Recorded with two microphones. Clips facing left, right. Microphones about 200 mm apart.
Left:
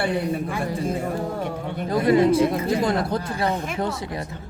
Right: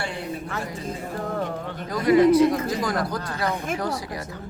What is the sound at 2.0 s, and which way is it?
Speech, 30° left (ahead or behind).